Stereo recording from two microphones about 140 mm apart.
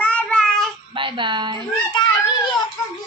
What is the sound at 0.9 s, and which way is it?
Speech, 35° right (ahead or behind).